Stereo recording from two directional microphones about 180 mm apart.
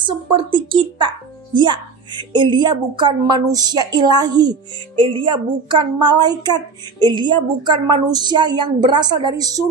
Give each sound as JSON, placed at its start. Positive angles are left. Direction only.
{"t": 0.0, "sound": "speech", "side_deg": -30}